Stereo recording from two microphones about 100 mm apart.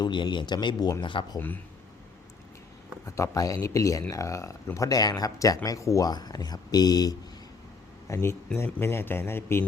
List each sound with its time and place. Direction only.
0.0 s speech: 50° left (ahead or behind)
1.0 s speech: 55° left (ahead or behind)
3.1 s speech: 35° left (ahead or behind)
8.0 s speech: 30° left (ahead or behind)